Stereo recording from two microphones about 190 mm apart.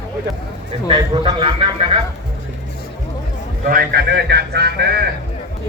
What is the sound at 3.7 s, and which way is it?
A man's voice, 50° right (ahead or behind).